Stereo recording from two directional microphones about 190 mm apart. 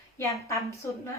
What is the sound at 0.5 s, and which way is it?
Speech, 15° left (ahead or behind).